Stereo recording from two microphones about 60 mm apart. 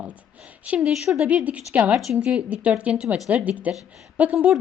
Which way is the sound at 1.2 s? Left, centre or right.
Right.